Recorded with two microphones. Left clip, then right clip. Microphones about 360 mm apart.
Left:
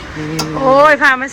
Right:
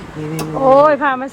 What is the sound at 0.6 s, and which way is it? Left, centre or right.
Speech, centre.